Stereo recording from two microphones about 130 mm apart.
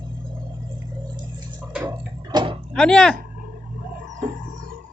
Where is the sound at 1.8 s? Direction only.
35° right (ahead or behind).